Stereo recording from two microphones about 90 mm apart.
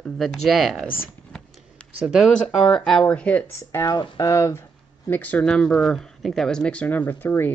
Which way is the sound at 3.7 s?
40° left (ahead or behind).